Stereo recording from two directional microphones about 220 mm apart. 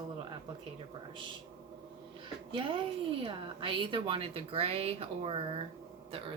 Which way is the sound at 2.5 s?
20° right (ahead or behind).